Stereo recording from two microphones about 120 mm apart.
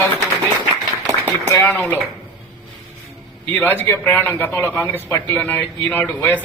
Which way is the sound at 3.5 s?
15° left (ahead or behind).